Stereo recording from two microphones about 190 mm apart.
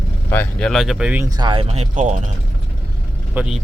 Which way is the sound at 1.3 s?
25° right (ahead or behind).